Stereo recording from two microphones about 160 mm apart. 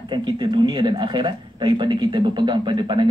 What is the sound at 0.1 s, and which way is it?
Speech, 30° right (ahead or behind).